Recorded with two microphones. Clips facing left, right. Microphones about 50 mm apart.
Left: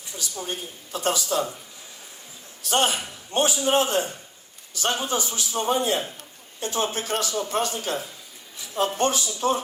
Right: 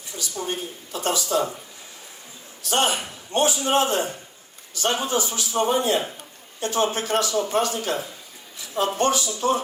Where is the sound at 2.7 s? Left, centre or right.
Right.